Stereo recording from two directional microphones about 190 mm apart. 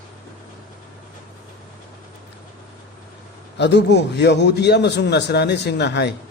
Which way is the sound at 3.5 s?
65° left (ahead or behind).